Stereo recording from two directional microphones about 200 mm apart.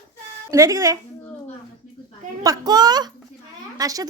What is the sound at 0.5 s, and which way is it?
Speech, 15° right (ahead or behind).